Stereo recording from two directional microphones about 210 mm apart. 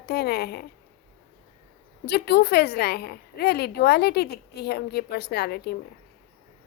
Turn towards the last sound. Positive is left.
turn(degrees=50)  # may be behind; listen again after turning